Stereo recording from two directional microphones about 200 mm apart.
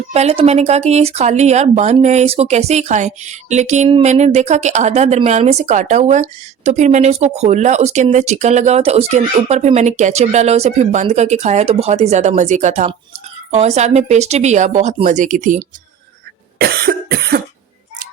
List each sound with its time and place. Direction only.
0.1 s speech: 30° right (ahead or behind)
16.6 s cough: 50° right (ahead or behind)